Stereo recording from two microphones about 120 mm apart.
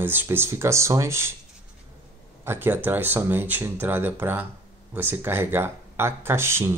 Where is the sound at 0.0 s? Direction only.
15° right (ahead or behind).